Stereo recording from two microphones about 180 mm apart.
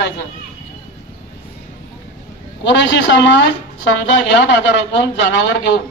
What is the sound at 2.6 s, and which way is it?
A woman's voice, 90° left.